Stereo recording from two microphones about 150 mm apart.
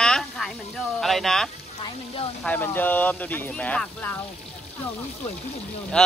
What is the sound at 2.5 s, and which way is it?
Speech, 15° left (ahead or behind).